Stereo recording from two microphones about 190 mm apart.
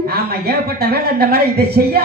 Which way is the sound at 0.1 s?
55° right (ahead or behind).